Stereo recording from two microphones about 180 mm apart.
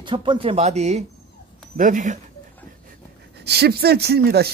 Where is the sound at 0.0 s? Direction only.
25° right (ahead or behind); by 2.1 s 45° right (ahead or behind).